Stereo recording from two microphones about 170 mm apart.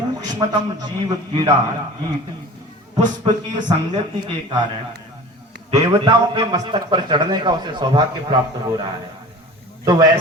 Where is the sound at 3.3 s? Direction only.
35° right (ahead or behind).